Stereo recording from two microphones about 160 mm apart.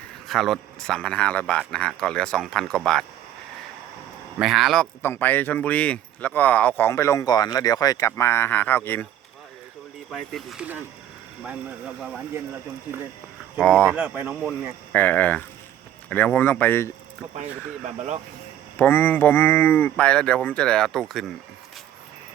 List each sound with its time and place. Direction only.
0.3 s speech: centre (ahead or behind)
4.4 s speech: centre (ahead or behind)
5.0 s speech: 15° left (ahead or behind)
10.1 s speech: centre (ahead or behind)
13.6 s speech: 5° left (ahead or behind)
13.9 s speech: 10° right (ahead or behind)
14.9 s speech: 10° left (ahead or behind)
17.3 s speech: 45° right (ahead or behind)
18.8 s speech: 10° left (ahead or behind)